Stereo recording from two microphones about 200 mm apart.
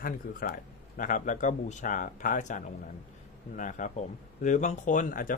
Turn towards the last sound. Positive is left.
turn(degrees=40)  # may be behind; listen again after turning